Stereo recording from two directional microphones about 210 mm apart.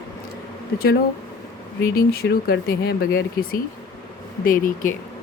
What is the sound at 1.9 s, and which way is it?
Speech, 50° left (ahead or behind).